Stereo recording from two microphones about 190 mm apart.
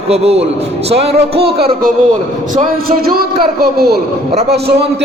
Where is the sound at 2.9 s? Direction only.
50° right (ahead or behind).